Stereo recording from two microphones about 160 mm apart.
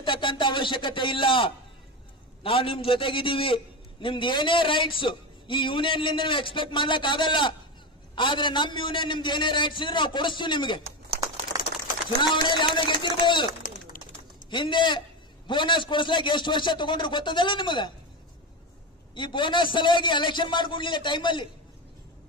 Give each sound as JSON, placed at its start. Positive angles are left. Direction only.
{"t": 0.0, "sound": "a man's voice", "side_deg": 30}
{"t": 11.5, "sound": "a sound", "side_deg": -25}
{"t": 12.2, "sound": "a man's voice", "side_deg": 30}
{"t": 13.9, "sound": "pigeon", "side_deg": 60}
{"t": 14.5, "sound": "a man's voice", "side_deg": 30}
{"t": 19.1, "sound": "a man's voice", "side_deg": 30}